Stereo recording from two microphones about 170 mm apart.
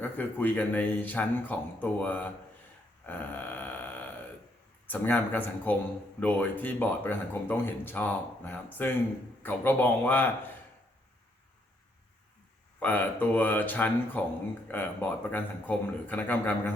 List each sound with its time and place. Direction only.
0.0 s speech: 10° left (ahead or behind)
3.1 s grunt: 10° left (ahead or behind)
4.9 s speech: 10° left (ahead or behind)
12.8 s speech: 10° left (ahead or behind)